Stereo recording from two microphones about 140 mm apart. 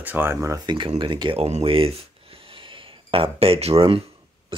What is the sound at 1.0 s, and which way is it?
Speech, 35° right (ahead or behind).